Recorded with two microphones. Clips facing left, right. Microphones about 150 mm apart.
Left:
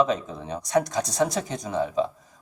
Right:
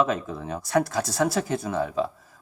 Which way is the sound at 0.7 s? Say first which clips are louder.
Even; 20° left (ahead or behind).